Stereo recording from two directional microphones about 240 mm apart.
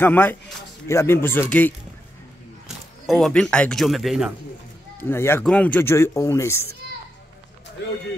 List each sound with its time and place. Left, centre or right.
0.0 s speech: centre
3.1 s speech: centre